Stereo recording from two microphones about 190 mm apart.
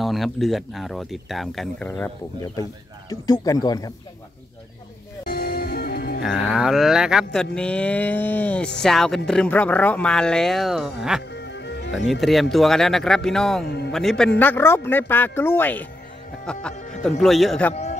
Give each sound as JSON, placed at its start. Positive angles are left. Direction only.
{"t": 0.0, "sound": "speech", "side_deg": 0}
{"t": 5.2, "sound": "music", "side_deg": 55}
{"t": 6.2, "sound": "speech", "side_deg": -5}
{"t": 11.3, "sound": "music", "side_deg": 65}
{"t": 12.1, "sound": "speech", "side_deg": 0}
{"t": 13.7, "sound": "a man's voice", "side_deg": 60}
{"t": 13.9, "sound": "speech", "side_deg": 0}